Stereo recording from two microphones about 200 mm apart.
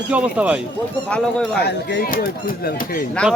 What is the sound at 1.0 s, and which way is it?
Speech, 5° left (ahead or behind).